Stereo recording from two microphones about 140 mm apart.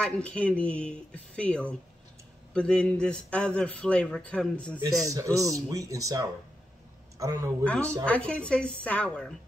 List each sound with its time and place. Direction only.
0.0 s a man's voice: 10° left (ahead or behind)
5.0 s speech: 25° right (ahead or behind)
7.6 s a man's voice: 10° left (ahead or behind)